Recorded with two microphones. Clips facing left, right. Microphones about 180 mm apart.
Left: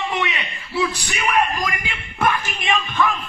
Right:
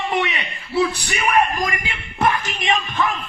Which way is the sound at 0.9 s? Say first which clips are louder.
Right 2 dB; 60° right (ahead or behind).